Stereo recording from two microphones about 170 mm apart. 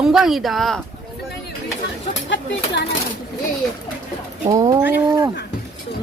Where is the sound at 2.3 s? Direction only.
90° left.